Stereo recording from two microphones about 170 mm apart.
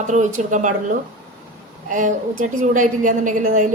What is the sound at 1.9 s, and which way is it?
A woman's voice, 50° right (ahead or behind).